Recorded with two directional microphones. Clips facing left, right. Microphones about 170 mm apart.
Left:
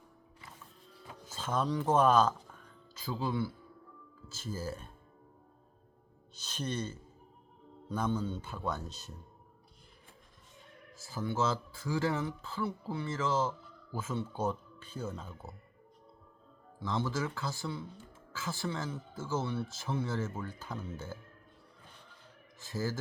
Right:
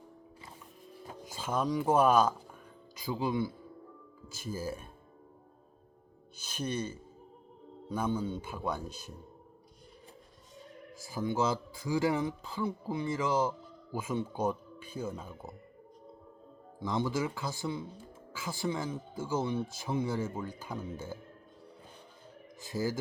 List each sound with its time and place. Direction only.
1.2 s speech: 10° right (ahead or behind)
6.3 s speech: 10° right (ahead or behind)
10.9 s speech: 15° right (ahead or behind)
16.8 s speech: 15° right (ahead or behind)
22.6 s speech: 15° right (ahead or behind)